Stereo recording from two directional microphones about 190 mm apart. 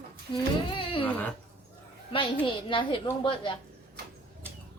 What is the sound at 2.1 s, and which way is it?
A woman's voice, 25° left (ahead or behind).